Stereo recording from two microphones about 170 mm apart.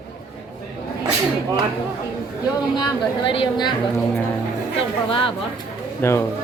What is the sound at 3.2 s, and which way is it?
Speech, 30° left (ahead or behind).